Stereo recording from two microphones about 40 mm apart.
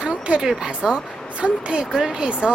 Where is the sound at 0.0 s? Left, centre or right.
Right.